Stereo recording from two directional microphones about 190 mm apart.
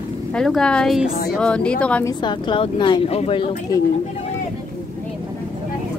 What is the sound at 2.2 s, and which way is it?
Speech, 25° left (ahead or behind).